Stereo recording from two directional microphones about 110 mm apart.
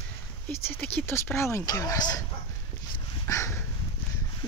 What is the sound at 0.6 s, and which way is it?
Speech, 20° left (ahead or behind).